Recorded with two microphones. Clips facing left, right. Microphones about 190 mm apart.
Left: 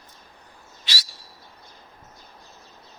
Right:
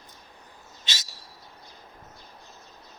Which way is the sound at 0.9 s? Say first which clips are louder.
Left 2 dB; 20° right (ahead or behind).